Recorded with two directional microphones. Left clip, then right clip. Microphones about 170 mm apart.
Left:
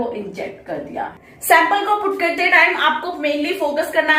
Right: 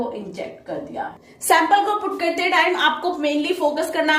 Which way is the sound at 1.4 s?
55° right (ahead or behind).